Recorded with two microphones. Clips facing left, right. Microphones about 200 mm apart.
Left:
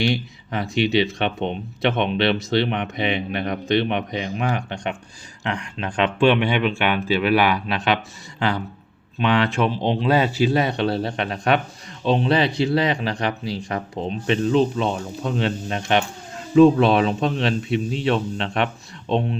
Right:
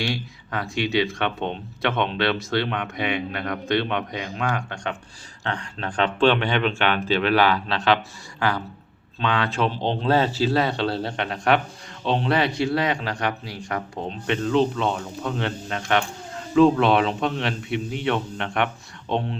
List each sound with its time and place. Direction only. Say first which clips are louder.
0.1 s speech: left 4 dB; 20° left (ahead or behind)